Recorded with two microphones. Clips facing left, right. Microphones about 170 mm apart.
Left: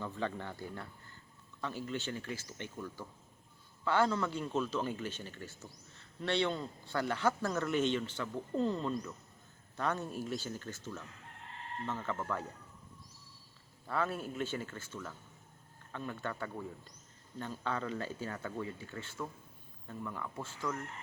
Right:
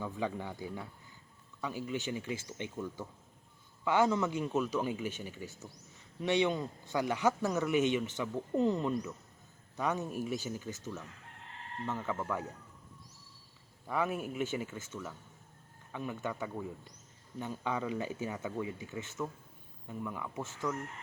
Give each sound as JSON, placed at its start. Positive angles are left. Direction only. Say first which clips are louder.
{"t": 0.0, "sound": "a man's voice", "louder": "right 2 dB", "side_deg": -10}
{"t": 13.8, "sound": "a man's voice", "louder": "right 2 dB", "side_deg": -15}